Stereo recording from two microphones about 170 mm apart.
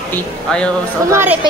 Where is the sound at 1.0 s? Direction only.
15° right (ahead or behind).